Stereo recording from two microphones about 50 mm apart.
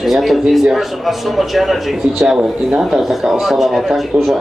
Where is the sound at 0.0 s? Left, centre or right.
Centre.